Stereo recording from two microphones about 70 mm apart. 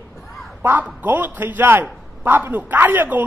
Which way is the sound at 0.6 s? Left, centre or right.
Right.